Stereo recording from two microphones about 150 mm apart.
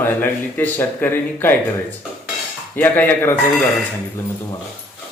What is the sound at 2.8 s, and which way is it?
Speech, 15° left (ahead or behind).